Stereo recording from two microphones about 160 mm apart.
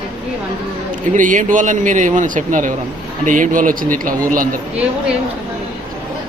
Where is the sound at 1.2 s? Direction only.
55° right (ahead or behind).